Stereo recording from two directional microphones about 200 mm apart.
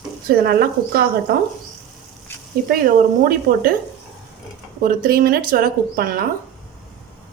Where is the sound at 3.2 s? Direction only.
45° right (ahead or behind).